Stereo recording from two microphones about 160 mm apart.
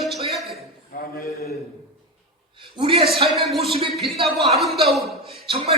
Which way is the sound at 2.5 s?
30° right (ahead or behind).